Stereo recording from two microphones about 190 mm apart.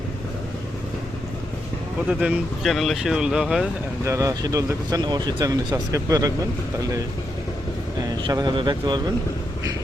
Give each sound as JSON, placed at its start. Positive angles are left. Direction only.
{"t": 2.0, "sound": "speech", "side_deg": -5}
{"t": 4.1, "sound": "speech", "side_deg": -15}
{"t": 8.3, "sound": "speech", "side_deg": -20}